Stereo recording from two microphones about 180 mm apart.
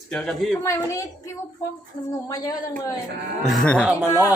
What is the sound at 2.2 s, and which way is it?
Speech, 20° left (ahead or behind).